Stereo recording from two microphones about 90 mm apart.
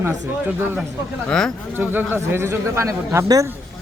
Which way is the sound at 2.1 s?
25° right (ahead or behind).